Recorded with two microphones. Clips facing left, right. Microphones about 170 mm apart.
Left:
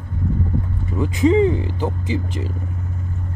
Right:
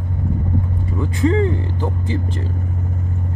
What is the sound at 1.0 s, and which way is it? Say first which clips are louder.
Speech: left 3 dB; 15° left (ahead or behind).